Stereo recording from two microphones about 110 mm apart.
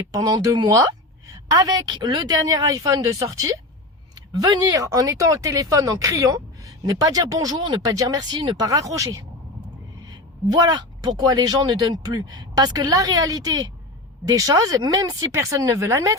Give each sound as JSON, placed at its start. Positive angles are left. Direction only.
{"t": 0.1, "sound": "speech", "side_deg": -40}
{"t": 7.6, "sound": "speech", "side_deg": -45}
{"t": 7.9, "sound": "speech", "side_deg": -35}
{"t": 8.6, "sound": "speech", "side_deg": -30}